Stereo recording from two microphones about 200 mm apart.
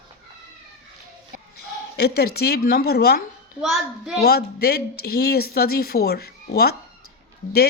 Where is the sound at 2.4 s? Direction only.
50° left (ahead or behind).